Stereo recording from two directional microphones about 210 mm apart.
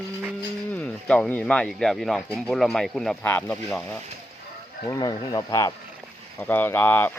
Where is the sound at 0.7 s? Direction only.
5° left (ahead or behind).